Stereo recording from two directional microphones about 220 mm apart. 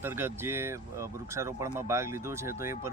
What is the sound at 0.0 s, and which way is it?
Speech, 10° right (ahead or behind).